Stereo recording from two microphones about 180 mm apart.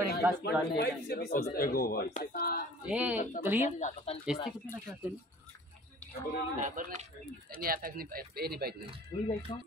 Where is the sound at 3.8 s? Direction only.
40° left (ahead or behind).